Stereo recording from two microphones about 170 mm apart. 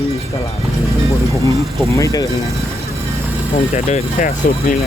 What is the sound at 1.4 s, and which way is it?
Speech, 20° left (ahead or behind).